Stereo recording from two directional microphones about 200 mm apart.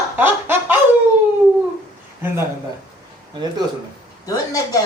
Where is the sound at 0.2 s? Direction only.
10° right (ahead or behind).